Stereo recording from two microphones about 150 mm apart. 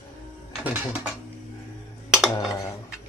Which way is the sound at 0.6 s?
10° right (ahead or behind).